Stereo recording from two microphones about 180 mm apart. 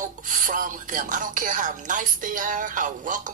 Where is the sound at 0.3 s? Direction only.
45° right (ahead or behind).